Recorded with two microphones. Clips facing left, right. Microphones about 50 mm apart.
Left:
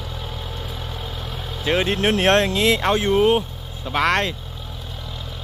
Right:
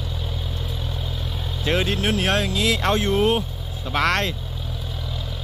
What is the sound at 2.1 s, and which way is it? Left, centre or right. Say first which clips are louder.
Speech: left 8 dB; left.